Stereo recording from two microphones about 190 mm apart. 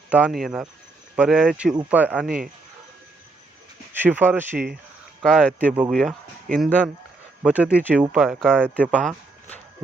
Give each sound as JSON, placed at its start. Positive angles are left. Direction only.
{"t": 0.1, "sound": "speech", "side_deg": -5}
{"t": 2.2, "sound": "speech", "side_deg": -50}
{"t": 3.9, "sound": "speech", "side_deg": -10}
{"t": 5.2, "sound": "speech", "side_deg": 0}
{"t": 7.4, "sound": "speech", "side_deg": -5}
{"t": 7.7, "sound": "speech", "side_deg": 10}
{"t": 8.1, "sound": "speech", "side_deg": 0}